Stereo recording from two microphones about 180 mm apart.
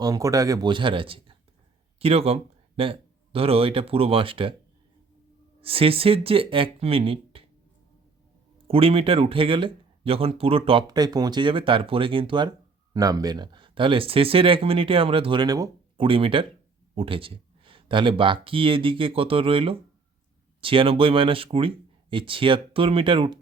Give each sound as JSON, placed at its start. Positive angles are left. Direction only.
{"t": 0.0, "sound": "speech", "side_deg": -20}
{"t": 5.5, "sound": "speech", "side_deg": -30}
{"t": 8.6, "sound": "speech", "side_deg": -30}